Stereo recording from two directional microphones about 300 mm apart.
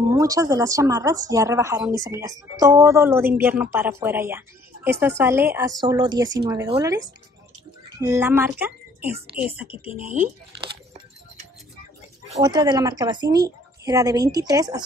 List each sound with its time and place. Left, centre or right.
0.1 s a woman's voice: centre
8.0 s a woman's voice: centre
12.3 s a woman's voice: centre